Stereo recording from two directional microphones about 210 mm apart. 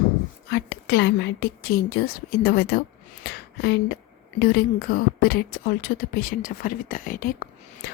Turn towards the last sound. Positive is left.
turn(degrees=40)  # may be behind; listen again after turning